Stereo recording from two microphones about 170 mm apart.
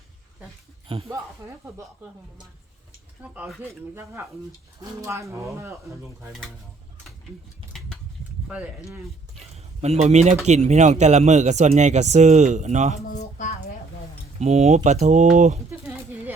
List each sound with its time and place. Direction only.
0.9 s speech: 35° right (ahead or behind)
3.2 s speech: 10° right (ahead or behind)
7.7 s a sound: centre (ahead or behind)
8.4 s speech: 5° right (ahead or behind)
9.4 s a man's voice: 40° right (ahead or behind)
13.1 s speech: 45° left (ahead or behind)
14.3 s a man's voice: 40° right (ahead or behind)